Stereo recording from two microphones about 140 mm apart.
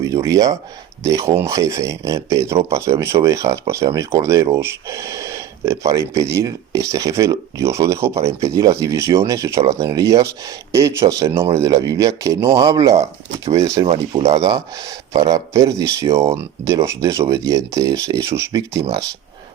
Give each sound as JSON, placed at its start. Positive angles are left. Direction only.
{"t": 0.0, "sound": "speech", "side_deg": -20}